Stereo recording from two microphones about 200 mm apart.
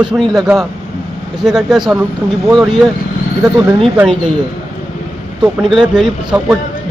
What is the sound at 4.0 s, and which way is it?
Speech, 5° right (ahead or behind).